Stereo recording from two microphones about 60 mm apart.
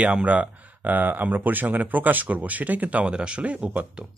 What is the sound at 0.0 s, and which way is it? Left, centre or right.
Speech, right.